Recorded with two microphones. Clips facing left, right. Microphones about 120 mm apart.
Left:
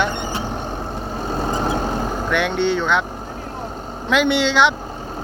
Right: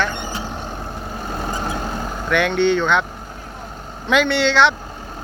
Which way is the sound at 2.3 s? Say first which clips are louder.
Right 3 dB; centre (ahead or behind).